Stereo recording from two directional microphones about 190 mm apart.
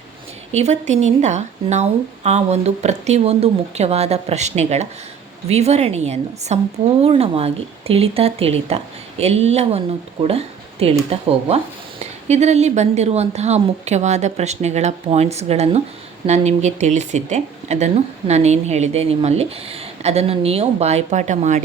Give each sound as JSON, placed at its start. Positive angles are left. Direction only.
{"t": 0.5, "sound": "speech", "side_deg": -35}